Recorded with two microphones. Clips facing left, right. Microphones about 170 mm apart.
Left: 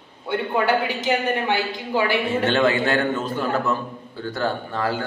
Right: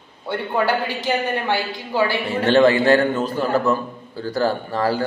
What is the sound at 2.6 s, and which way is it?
A man's voice, 35° right (ahead or behind).